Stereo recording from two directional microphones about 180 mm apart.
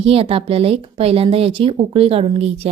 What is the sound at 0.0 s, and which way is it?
A woman's voice, 30° right (ahead or behind).